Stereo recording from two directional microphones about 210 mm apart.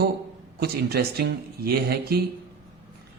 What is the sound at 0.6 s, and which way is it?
Speech, 50° right (ahead or behind).